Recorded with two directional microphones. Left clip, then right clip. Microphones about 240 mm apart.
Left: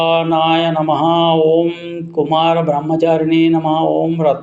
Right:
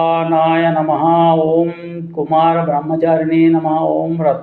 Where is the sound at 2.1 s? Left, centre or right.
Left.